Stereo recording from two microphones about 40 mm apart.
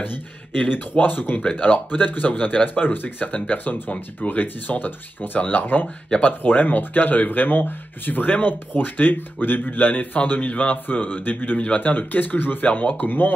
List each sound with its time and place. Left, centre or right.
1.0 s speech: left
1.6 s speech: left